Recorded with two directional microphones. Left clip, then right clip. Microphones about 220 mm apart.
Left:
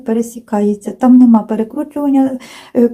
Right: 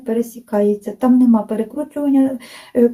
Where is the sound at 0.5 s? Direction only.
25° left (ahead or behind).